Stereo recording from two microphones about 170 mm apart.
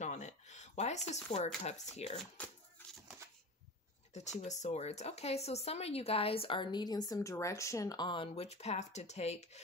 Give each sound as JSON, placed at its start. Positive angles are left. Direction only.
{"t": 0.0, "sound": "a sound", "side_deg": 40}
{"t": 1.6, "sound": "speech", "side_deg": 40}
{"t": 4.1, "sound": "speech", "side_deg": 40}